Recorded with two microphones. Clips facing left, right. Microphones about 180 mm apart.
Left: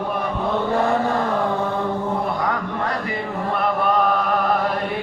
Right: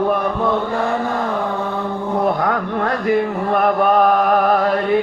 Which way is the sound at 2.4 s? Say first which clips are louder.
Right 4 dB; 50° right (ahead or behind).